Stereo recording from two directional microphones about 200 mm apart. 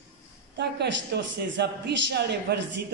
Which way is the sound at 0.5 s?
60° right (ahead or behind).